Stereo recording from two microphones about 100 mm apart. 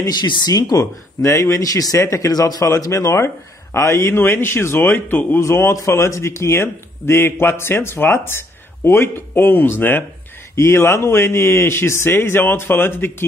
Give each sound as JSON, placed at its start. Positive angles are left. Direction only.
{"t": 0.0, "sound": "a man's voice", "side_deg": 45}